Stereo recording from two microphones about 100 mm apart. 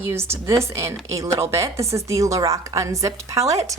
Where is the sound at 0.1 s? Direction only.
25° right (ahead or behind).